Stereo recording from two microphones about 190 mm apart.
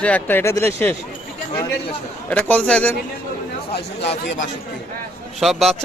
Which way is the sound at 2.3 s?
10° left (ahead or behind).